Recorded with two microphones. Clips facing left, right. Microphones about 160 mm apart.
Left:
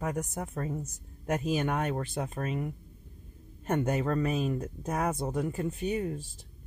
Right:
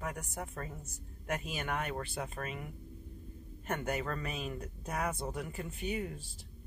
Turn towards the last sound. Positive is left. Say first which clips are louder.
# left 6 dB
turn(degrees=40)  # may be behind; listen again after turning